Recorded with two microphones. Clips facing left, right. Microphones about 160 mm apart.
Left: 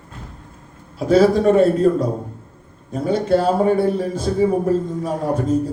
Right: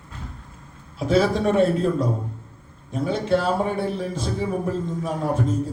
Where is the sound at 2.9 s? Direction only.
45° left (ahead or behind).